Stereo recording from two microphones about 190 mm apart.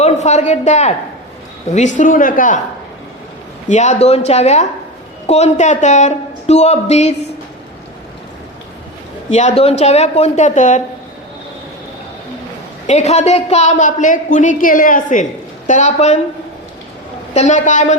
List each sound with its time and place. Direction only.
0.0 s speech: 35° left (ahead or behind)
2.0 s speech: 45° left (ahead or behind)
3.7 s speech: 40° left (ahead or behind)
9.3 s speech: 35° left (ahead or behind)
12.9 s speech: 35° left (ahead or behind)
17.3 s speech: 40° left (ahead or behind)